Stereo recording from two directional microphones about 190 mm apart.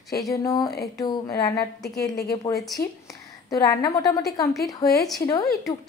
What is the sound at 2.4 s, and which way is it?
A woman's voice, 20° left (ahead or behind).